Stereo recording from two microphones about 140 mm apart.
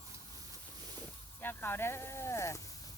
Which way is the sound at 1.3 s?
15° left (ahead or behind).